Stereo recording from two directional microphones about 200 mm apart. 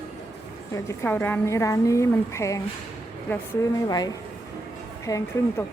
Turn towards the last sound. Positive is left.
turn(degrees=15)  # may be behind; listen again after turning